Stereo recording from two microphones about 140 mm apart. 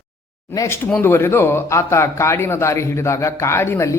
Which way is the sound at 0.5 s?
20° left (ahead or behind).